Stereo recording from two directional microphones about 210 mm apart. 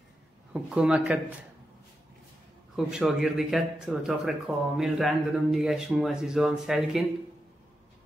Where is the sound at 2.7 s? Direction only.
Centre (ahead or behind).